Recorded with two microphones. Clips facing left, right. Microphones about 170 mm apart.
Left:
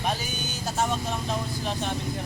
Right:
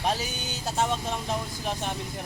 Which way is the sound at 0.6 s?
20° right (ahead or behind).